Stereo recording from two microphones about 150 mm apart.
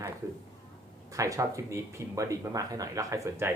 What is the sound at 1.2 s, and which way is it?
A woman's voice, 20° right (ahead or behind).